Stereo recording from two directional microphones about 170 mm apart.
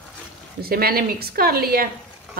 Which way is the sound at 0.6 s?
65° right (ahead or behind).